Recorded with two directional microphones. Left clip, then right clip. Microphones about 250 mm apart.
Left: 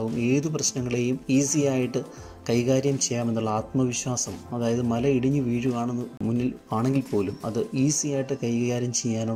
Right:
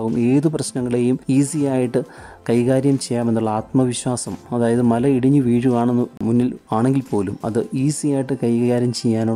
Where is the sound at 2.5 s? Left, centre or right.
Centre.